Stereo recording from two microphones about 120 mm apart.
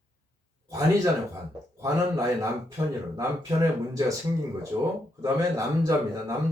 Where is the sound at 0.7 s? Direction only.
30° right (ahead or behind).